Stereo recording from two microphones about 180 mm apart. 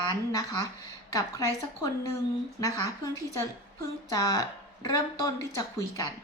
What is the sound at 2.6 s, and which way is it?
Speech, 20° left (ahead or behind).